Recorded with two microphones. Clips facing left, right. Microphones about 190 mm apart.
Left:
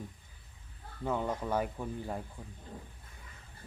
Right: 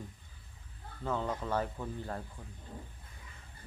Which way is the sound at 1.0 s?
15° left (ahead or behind).